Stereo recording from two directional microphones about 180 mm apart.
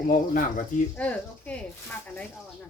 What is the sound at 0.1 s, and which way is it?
Speech, 45° left (ahead or behind).